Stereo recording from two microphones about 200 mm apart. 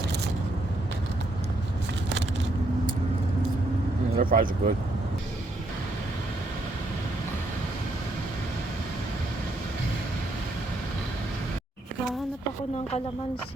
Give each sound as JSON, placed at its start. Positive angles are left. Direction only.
{"t": 4.2, "sound": "speech", "side_deg": -45}